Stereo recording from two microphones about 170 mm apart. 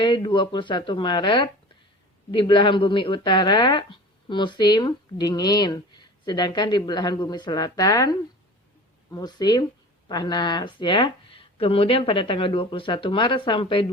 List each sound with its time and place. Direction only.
0.0 s speech: 25° left (ahead or behind)